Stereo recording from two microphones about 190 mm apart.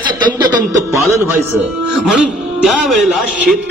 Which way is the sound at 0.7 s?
15° right (ahead or behind).